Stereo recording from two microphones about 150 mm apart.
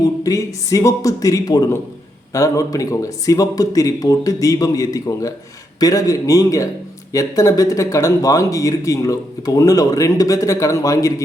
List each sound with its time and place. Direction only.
0.2 s speech: 20° left (ahead or behind)